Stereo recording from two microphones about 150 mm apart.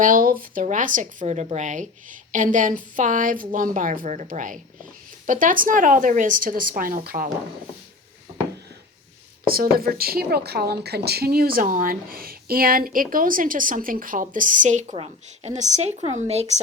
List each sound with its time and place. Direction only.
0.0 s a woman's voice: 70° right (ahead or behind)
9.5 s a woman's voice: 80° right; by 14.9 s 55° right (ahead or behind)
14.9 s speech: 45° right (ahead or behind)